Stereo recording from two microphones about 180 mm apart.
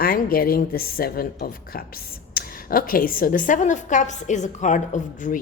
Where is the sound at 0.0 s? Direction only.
55° left (ahead or behind).